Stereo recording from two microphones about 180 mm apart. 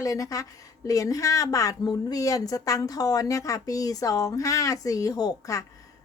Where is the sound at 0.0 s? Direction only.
20° left (ahead or behind).